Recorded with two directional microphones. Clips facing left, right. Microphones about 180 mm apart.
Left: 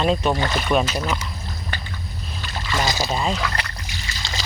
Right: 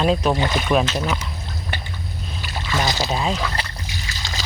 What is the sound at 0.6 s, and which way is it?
Speech, centre (ahead or behind).